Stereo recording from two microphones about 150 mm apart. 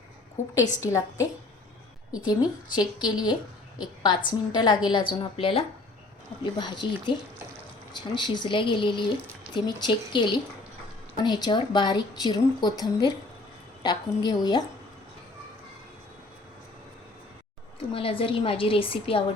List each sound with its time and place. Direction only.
0.8 s a woman's voice: 20° left (ahead or behind)
17.9 s a woman's voice: 35° left (ahead or behind)